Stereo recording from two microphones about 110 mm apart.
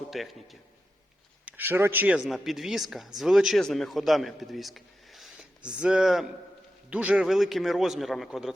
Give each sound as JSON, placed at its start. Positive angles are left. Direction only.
{"t": 0.1, "sound": "a man's voice", "side_deg": 0}
{"t": 1.5, "sound": "speech", "side_deg": -20}
{"t": 2.2, "sound": "a man's voice", "side_deg": 0}